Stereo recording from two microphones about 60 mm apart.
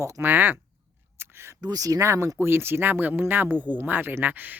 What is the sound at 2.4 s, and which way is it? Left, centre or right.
Speech, right.